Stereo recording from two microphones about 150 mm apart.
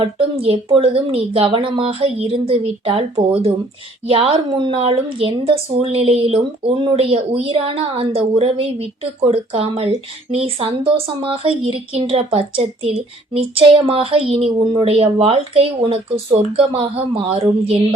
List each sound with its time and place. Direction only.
0.0 s speech: 35° right (ahead or behind)